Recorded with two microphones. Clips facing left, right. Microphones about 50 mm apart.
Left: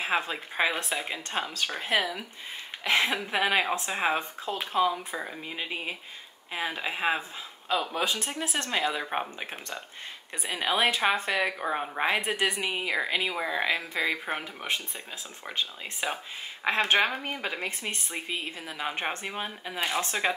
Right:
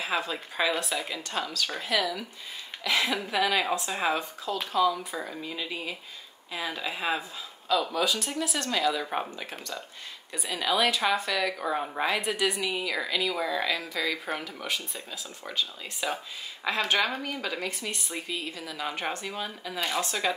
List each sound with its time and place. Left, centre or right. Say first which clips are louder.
0.0 s speech: left 1 dB; left
12.0 s speech: left 2 dB; left